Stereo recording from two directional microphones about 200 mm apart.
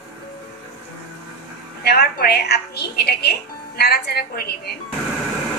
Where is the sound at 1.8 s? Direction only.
50° left (ahead or behind).